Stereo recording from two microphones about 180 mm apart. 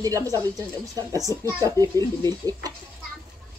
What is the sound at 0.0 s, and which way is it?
Speech, 20° right (ahead or behind).